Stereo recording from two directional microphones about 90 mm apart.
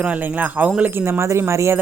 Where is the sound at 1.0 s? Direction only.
30° right (ahead or behind).